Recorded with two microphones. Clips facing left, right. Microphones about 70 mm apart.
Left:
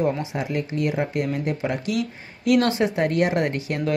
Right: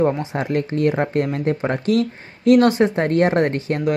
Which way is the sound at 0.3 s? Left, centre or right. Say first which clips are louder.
Right 5 dB; right.